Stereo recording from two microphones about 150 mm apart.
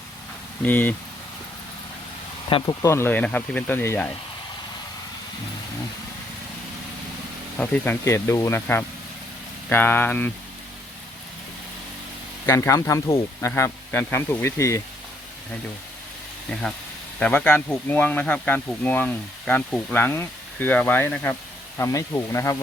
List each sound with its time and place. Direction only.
0.6 s speech: 10° left (ahead or behind)
2.5 s speech: 35° left (ahead or behind)
2.8 s speech: 15° left (ahead or behind)
7.6 s speech: 10° left (ahead or behind)
12.5 s speech: 20° left (ahead or behind)
17.2 s speech: 5° left (ahead or behind)